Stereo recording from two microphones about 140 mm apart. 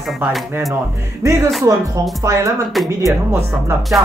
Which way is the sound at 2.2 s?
20° right (ahead or behind).